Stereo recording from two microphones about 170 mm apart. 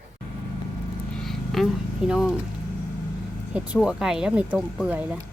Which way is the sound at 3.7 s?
5° right (ahead or behind).